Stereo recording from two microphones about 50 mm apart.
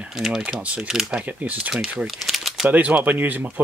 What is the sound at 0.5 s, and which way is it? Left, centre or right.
Speech, right.